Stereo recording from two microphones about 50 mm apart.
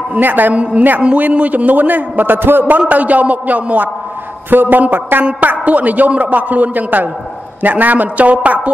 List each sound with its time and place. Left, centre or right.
0.2 s a man's voice: right
0.6 s a woman's voice: right
2.9 s a man's voice: right